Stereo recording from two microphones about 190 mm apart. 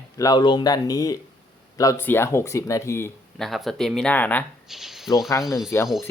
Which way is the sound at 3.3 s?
Centre (ahead or behind).